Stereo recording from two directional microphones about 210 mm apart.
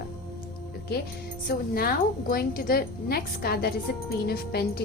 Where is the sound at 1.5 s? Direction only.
45° left (ahead or behind).